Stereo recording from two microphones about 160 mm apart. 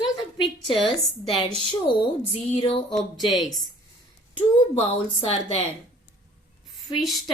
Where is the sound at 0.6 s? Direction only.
35° left (ahead or behind).